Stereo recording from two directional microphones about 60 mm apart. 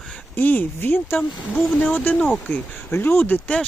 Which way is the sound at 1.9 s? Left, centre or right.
Left.